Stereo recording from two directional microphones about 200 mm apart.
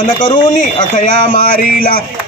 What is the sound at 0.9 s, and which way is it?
Speech, 45° left (ahead or behind).